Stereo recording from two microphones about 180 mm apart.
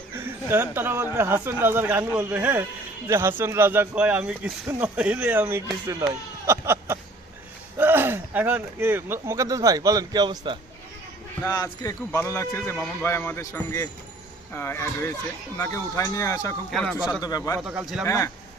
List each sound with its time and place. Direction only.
0.1 s speech: 10° right (ahead or behind)
11.4 s a man's voice: 20° left (ahead or behind)
16.7 s speech: centre (ahead or behind)
17.2 s speech: 20° left (ahead or behind)
17.6 s speech: 5° right (ahead or behind)
18.0 s a man's voice: 15° left (ahead or behind)